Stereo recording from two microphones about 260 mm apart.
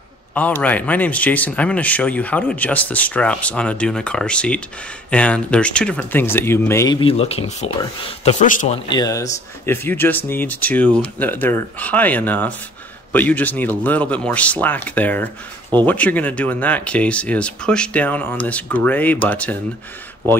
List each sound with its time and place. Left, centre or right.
0.3 s speech: centre; by 8.7 s left
8.8 s speech: centre